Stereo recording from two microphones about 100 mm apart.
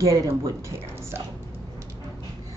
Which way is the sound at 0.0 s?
35° right (ahead or behind).